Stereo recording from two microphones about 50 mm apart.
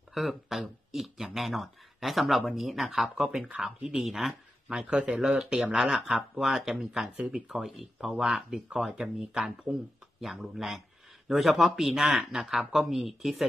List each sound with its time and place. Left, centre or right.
0.1 s speech: centre
7.5 s speech: centre
9.7 s speech: right
10.4 s speech: centre